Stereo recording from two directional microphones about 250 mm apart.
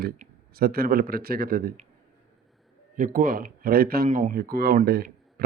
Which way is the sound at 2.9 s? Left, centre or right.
Right.